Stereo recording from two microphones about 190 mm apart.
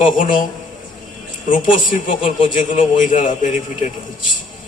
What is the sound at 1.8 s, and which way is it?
A man's voice, 40° left (ahead or behind).